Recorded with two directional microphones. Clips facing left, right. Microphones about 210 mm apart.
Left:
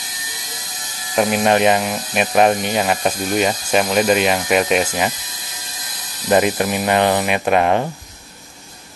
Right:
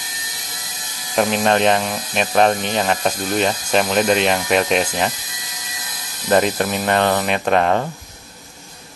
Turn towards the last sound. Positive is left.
turn(degrees=15)  # may be behind; listen again after turning